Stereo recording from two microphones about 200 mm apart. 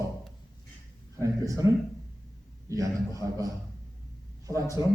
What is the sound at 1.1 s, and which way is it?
Speech, 15° right (ahead or behind).